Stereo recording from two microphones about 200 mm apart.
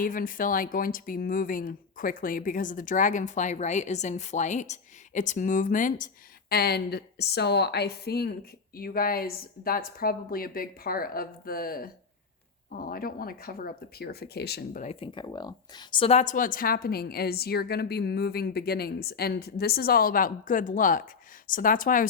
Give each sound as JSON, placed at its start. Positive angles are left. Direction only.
{"t": 0.0, "sound": "speech", "side_deg": 45}
{"t": 6.5, "sound": "a woman's voice", "side_deg": 50}
{"t": 14.9, "sound": "a woman's voice", "side_deg": 25}